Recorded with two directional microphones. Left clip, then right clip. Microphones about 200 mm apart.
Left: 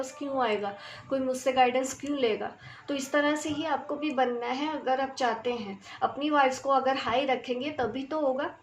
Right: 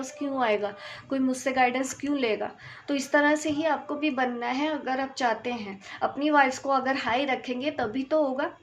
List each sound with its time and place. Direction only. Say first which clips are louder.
0.3 s a woman's voice: right 2 dB; 30° right (ahead or behind)